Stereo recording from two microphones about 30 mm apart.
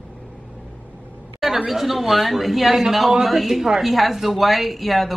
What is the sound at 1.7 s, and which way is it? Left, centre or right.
Speech, centre.